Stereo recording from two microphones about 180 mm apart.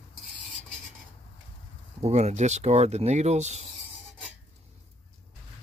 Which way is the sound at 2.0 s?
40° right (ahead or behind).